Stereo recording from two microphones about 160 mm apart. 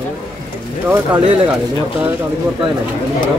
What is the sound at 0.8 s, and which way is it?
Speech, 15° right (ahead or behind).